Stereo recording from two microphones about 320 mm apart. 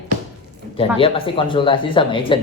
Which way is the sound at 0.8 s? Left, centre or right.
Centre.